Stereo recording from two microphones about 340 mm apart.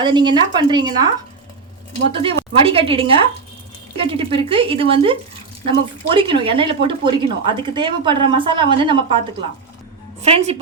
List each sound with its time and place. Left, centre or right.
0.0 s a woman's voice: centre
2.1 s a woman's voice: centre
6.1 s a woman's voice: centre
10.2 s a woman's voice: centre